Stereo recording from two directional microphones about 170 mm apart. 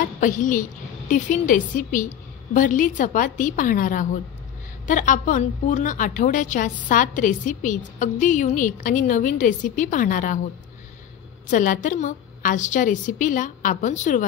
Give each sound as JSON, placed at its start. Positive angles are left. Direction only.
{"t": 0.0, "sound": "a woman's voice", "side_deg": 50}
{"t": 11.5, "sound": "a woman's voice", "side_deg": 50}